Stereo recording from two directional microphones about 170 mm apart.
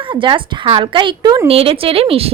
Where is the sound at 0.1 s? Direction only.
30° right (ahead or behind).